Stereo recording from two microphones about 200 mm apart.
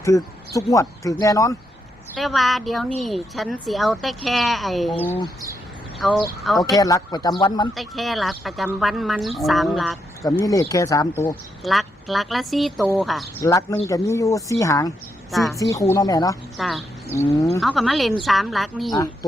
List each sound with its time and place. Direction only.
0.5 s speech: 15° left (ahead or behind)
2.1 s speech: centre (ahead or behind)
6.7 s speech: 15° left (ahead or behind)
7.7 s speech: centre (ahead or behind)
10.2 s speech: 15° left (ahead or behind)
11.6 s speech: centre (ahead or behind)
13.4 s speech: 15° left (ahead or behind)
15.3 s speech: centre (ahead or behind)
15.5 s speech: 15° left (ahead or behind)
16.6 s speech: centre (ahead or behind)
17.1 s speech: 15° left (ahead or behind)
17.6 s speech: centre (ahead or behind)